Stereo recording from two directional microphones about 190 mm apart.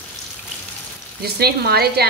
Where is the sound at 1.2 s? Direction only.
55° right (ahead or behind).